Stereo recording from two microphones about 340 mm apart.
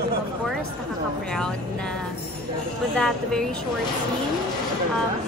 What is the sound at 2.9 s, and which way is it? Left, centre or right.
Speech, centre.